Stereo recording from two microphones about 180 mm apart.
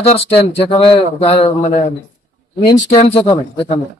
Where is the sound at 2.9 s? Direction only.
35° left (ahead or behind).